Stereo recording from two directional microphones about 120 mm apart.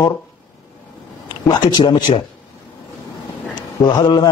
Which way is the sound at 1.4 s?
40° left (ahead or behind).